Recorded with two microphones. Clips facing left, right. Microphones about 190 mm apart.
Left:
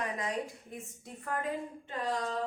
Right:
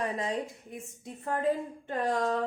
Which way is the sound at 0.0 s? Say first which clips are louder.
Right 3 dB; 30° right (ahead or behind).